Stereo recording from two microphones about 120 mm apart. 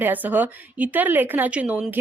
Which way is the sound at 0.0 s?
15° right (ahead or behind).